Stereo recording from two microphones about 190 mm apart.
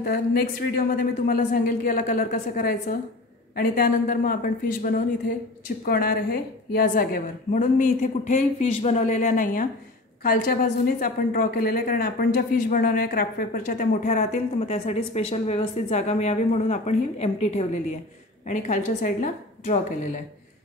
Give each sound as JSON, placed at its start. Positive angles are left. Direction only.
{"t": 0.0, "sound": "a woman's voice", "side_deg": 55}
{"t": 5.9, "sound": "a woman's voice", "side_deg": 50}